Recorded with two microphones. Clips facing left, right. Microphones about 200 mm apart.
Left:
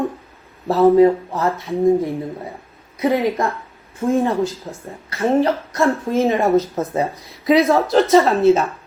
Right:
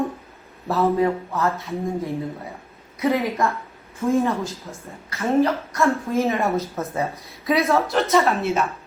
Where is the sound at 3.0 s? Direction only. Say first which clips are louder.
Left 3 dB; 30° left (ahead or behind).